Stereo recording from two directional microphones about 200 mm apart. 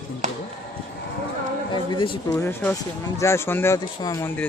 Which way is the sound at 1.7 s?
25° left (ahead or behind).